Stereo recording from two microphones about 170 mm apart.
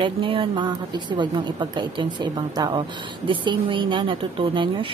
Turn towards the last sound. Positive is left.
turn(degrees=-30)  # may be behind; listen again after turning